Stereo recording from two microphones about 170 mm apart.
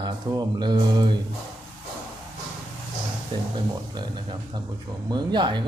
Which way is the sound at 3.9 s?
25° right (ahead or behind).